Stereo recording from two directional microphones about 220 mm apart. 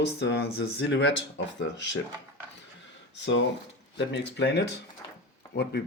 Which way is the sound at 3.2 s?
55° left (ahead or behind).